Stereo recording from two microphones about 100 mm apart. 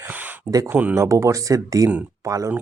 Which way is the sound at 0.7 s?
15° right (ahead or behind).